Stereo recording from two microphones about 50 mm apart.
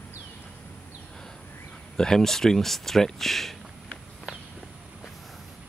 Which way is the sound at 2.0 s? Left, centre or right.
Centre.